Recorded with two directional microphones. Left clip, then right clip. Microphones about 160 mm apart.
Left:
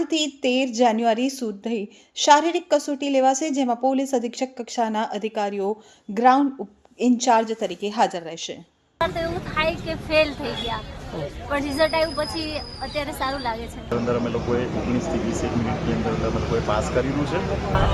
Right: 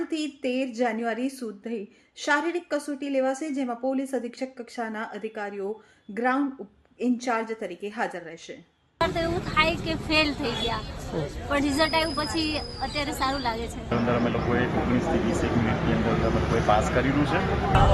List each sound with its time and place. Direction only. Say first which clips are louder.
0.1 s a woman's voice: left 7 dB; 30° left (ahead or behind)
9.0 s speech: left 1 dB; 5° left (ahead or behind)
13.9 s speech: left 2 dB; 20° left (ahead or behind)